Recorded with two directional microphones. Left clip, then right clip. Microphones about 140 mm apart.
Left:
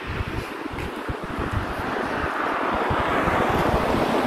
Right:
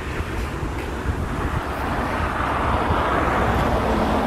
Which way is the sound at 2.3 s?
Centre (ahead or behind).